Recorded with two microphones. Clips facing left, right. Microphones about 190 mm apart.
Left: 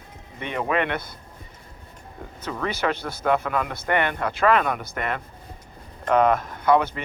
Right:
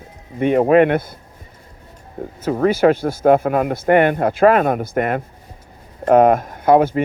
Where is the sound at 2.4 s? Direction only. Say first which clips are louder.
Right 12 dB; 45° right (ahead or behind).